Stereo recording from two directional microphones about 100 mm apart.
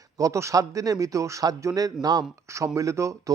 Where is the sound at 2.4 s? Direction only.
30° right (ahead or behind).